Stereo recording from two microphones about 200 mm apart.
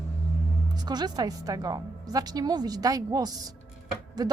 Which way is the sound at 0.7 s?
20° right (ahead or behind).